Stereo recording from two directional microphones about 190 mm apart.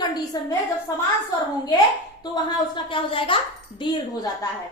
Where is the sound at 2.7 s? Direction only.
25° left (ahead or behind).